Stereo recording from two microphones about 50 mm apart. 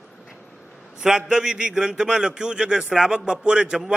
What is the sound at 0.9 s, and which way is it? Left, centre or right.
A man's voice, centre.